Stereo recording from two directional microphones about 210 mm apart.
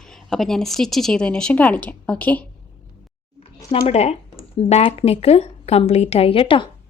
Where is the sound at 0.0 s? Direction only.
Centre (ahead or behind).